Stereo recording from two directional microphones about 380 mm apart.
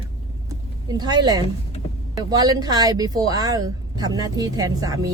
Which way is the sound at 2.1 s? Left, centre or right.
Centre.